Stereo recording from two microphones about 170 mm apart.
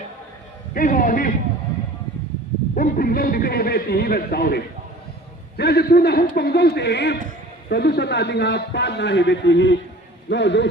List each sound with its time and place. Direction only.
0.7 s a man's voice: 55° left (ahead or behind)
2.7 s a man's voice: 55° left (ahead or behind); by 10.7 s 90° left